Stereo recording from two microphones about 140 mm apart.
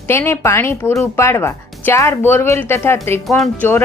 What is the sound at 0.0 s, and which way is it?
Speech, 15° left (ahead or behind).